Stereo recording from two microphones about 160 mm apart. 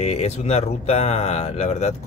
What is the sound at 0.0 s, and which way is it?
Speech, 40° left (ahead or behind).